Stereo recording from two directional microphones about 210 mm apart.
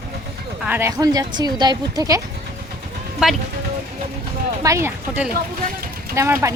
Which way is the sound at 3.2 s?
Centre (ahead or behind).